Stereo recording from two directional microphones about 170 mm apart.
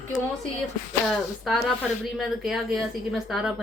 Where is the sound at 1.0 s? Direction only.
Centre (ahead or behind).